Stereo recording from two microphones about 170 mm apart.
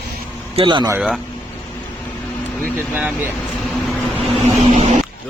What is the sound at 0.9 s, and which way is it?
Speech, 5° right (ahead or behind).